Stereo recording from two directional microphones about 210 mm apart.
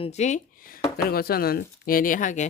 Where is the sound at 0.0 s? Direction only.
35° left (ahead or behind).